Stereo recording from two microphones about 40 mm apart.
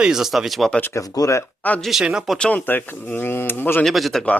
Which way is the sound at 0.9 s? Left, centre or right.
Left.